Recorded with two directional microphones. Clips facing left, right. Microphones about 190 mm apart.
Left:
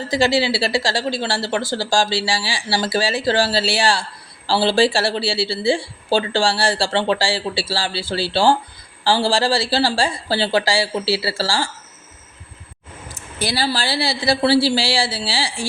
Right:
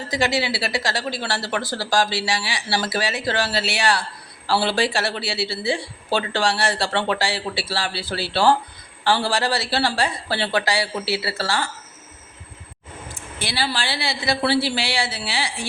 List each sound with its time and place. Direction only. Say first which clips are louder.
0.1 s speech: left 5 dB; 30° left (ahead or behind)
13.1 s a woman's voice: left 4 dB; 40° left (ahead or behind)